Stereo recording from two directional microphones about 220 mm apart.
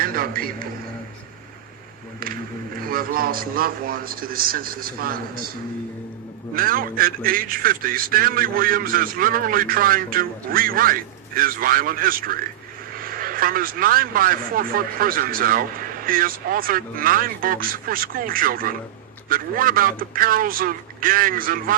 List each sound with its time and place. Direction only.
0.0 s music: 40° right (ahead or behind)
2.2 s a man's voice: 40° right (ahead or behind)
6.5 s a man's voice: 40° right (ahead or behind)